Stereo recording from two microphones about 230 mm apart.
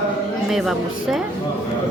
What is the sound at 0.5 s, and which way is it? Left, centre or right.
Speech, centre.